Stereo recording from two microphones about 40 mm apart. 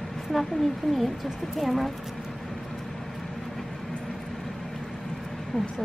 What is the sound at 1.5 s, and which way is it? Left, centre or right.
Speech, centre.